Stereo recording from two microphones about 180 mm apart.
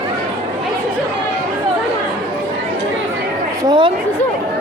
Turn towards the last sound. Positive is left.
turn(degrees=-25)  # may be behind; listen again after turning